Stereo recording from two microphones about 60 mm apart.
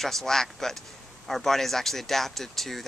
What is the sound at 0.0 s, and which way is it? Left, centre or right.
Speech, centre.